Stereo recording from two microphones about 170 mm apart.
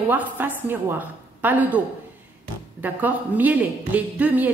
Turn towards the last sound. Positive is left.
turn(degrees=-10)  # may be behind; listen again after turning